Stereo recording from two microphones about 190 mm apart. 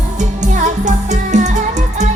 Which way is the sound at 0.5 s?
40° right (ahead or behind).